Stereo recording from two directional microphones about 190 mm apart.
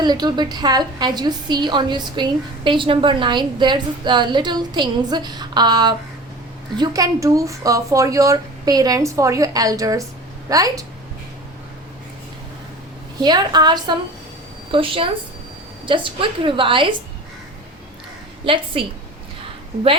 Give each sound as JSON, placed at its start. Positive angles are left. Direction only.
{"t": 0.0, "sound": "a woman's voice", "side_deg": -20}
{"t": 13.1, "sound": "a woman's voice", "side_deg": -20}
{"t": 18.4, "sound": "a woman's voice", "side_deg": -30}